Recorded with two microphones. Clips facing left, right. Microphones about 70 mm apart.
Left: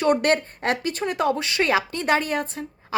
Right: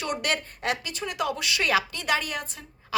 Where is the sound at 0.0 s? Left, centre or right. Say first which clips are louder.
Left 9 dB; left.